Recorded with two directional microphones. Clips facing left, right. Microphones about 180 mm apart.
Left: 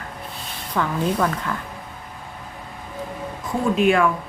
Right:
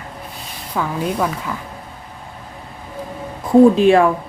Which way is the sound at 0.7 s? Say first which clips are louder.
Right 1 dB; 10° right (ahead or behind).